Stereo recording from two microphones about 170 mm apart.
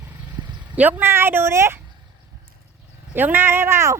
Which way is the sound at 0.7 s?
10° right (ahead or behind).